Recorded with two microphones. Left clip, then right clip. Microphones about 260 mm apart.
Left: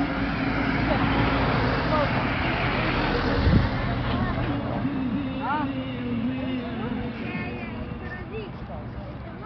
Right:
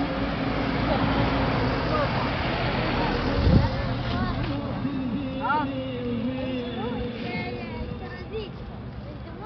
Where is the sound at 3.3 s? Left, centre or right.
Right.